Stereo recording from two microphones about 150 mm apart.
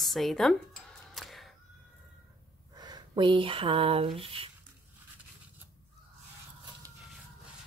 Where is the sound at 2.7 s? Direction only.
30° right (ahead or behind).